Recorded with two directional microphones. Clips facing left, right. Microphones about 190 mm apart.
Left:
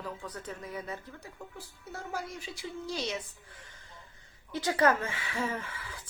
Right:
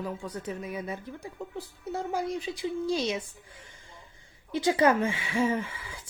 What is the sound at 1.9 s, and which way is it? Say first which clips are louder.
Speech: right 8 dB; 15° right (ahead or behind).